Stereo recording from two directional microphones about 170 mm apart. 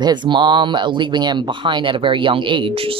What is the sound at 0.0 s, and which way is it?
A woman's voice, 25° right (ahead or behind).